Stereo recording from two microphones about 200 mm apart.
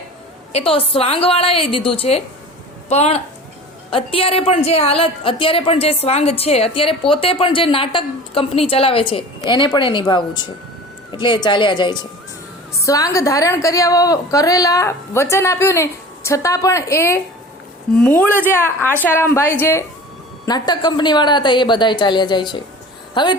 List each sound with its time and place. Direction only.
0.5 s a woman's voice: 30° left (ahead or behind)
18.2 s a woman's voice: 10° left (ahead or behind)